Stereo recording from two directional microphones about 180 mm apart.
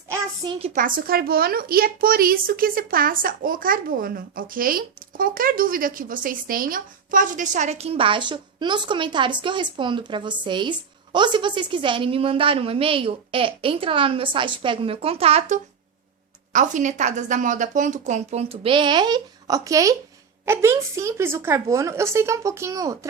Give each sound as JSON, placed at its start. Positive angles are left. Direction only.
{"t": 0.4, "sound": "a woman's voice", "side_deg": -35}
{"t": 0.8, "sound": "a woman's voice", "side_deg": -50}